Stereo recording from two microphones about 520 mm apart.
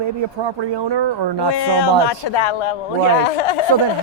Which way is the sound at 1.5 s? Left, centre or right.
Left.